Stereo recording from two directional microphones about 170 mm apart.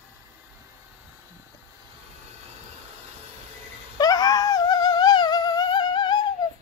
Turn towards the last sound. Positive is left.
turn(degrees=25)  # may be behind; listen again after turning